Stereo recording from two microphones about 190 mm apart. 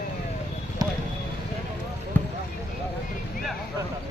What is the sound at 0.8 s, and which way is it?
Vehicle, 20° right (ahead or behind).